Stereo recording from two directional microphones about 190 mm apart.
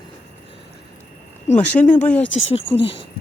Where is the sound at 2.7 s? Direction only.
30° left (ahead or behind).